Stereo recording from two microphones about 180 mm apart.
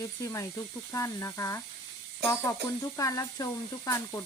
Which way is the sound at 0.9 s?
15° left (ahead or behind).